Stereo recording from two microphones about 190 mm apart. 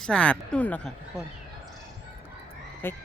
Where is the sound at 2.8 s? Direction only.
10° left (ahead or behind).